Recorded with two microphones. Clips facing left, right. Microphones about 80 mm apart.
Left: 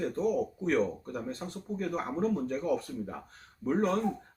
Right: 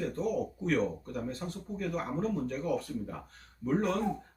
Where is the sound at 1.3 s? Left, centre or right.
Left.